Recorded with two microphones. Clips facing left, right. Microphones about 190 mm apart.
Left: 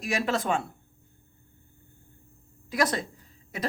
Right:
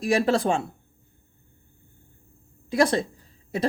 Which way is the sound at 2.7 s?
30° right (ahead or behind).